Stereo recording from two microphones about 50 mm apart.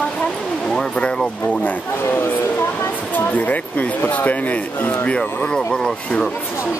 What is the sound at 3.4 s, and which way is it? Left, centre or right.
Speech, left.